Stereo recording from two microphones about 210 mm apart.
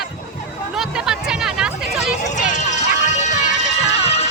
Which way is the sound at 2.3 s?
35° left (ahead or behind).